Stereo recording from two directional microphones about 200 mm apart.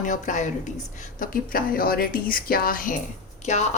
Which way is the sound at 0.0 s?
40° left (ahead or behind).